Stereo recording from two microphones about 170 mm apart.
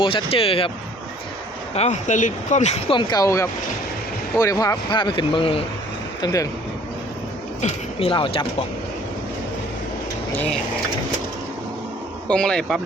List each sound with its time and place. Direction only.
0.0 s speech: 30° left (ahead or behind)
1.7 s speech: 40° left (ahead or behind)
3.0 s speech: 25° left (ahead or behind)
6.2 s speech: 20° left (ahead or behind)
7.6 s speech: 35° left (ahead or behind)
12.3 s speech: 5° left (ahead or behind)